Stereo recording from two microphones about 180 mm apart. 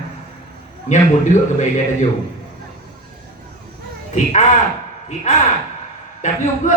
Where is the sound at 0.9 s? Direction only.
40° left (ahead or behind).